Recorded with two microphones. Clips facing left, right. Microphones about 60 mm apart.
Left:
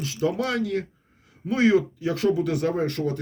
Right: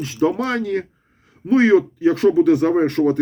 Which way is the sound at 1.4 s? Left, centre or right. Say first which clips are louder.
Right 7 dB; right.